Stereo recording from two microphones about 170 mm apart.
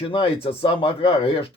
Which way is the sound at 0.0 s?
30° left (ahead or behind).